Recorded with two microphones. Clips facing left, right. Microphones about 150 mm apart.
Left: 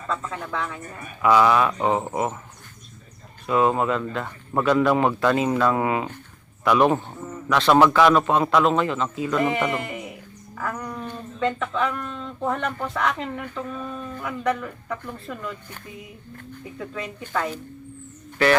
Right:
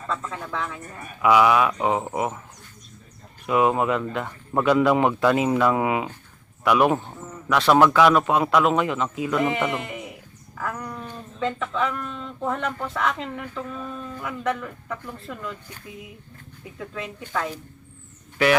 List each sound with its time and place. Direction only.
0.1 s speech: 5° left (ahead or behind)
3.4 s speech: 10° right (ahead or behind)
9.4 s speech: centre (ahead or behind)
16.7 s speech: centre (ahead or behind)